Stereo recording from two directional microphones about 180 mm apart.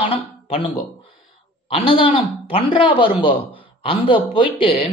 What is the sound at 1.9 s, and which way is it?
Speech, 30° left (ahead or behind).